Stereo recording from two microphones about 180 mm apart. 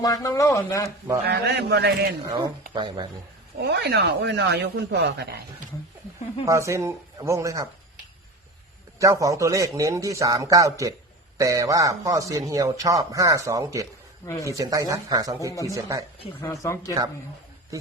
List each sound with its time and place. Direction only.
0.0 s speech: 20° left (ahead or behind)
1.3 s a man's voice: 65° right (ahead or behind)
2.7 s a man's voice: 25° right (ahead or behind)
3.6 s speech: 65° right (ahead or behind)
6.4 s speech: 15° right (ahead or behind)
9.0 s a man's voice: 20° right (ahead or behind)
16.4 s speech: 15° left (ahead or behind)